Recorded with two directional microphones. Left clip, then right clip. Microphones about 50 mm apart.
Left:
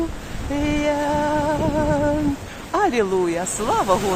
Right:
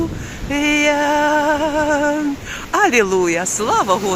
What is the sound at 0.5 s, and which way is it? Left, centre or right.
Music, centre.